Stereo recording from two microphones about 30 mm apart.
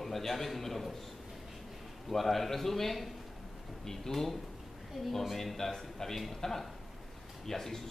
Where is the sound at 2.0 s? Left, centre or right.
Centre.